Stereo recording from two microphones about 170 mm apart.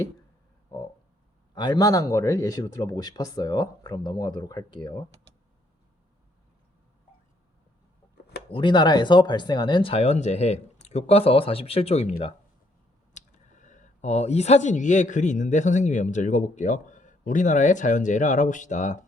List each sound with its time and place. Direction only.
1.5 s speech: 25° left (ahead or behind)
8.4 s speech: 30° left (ahead or behind)
13.1 s speech: 50° left (ahead or behind)